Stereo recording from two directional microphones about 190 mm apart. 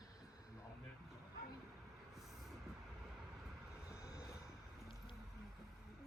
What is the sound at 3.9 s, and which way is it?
Vehicle, 15° left (ahead or behind).